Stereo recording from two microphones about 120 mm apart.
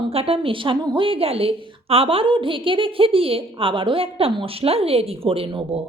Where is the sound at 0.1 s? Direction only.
55° right (ahead or behind).